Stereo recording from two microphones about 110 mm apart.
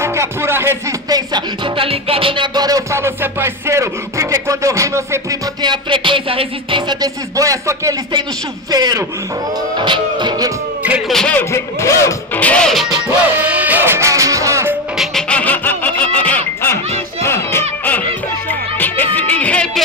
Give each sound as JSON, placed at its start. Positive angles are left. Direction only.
{"t": 0.0, "sound": "music", "side_deg": -25}
{"t": 1.0, "sound": "music", "side_deg": -40}
{"t": 5.6, "sound": "music", "side_deg": -45}
{"t": 7.0, "sound": "music", "side_deg": -30}
{"t": 8.1, "sound": "music", "side_deg": -40}
{"t": 11.1, "sound": "a man's voice", "side_deg": 5}
{"t": 11.3, "sound": "a man's voice", "side_deg": 25}
{"t": 12.4, "sound": "music", "side_deg": 10}
{"t": 13.0, "sound": "music", "side_deg": -15}
{"t": 15.0, "sound": "music", "side_deg": 5}